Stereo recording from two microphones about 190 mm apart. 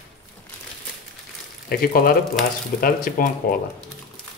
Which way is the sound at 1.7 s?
50° left (ahead or behind).